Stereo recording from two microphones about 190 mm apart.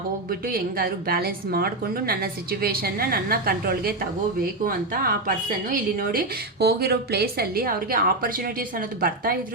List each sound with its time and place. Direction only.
0.3 s a woman's voice: 50° right (ahead or behind)